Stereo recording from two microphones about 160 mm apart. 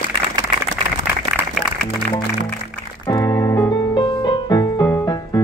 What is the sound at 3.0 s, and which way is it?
Music, 25° left (ahead or behind).